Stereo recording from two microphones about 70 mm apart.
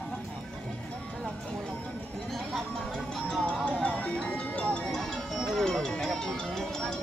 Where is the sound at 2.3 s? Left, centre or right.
Centre.